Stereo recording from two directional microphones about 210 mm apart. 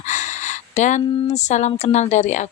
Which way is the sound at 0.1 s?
35° left (ahead or behind).